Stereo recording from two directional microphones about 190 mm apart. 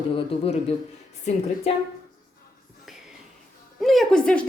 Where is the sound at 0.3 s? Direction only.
30° left (ahead or behind).